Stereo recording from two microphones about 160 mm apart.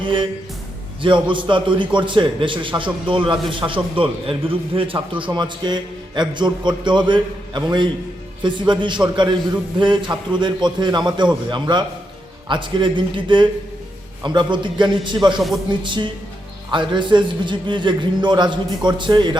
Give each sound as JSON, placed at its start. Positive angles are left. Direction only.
{"t": 0.0, "sound": "a man's voice", "side_deg": -30}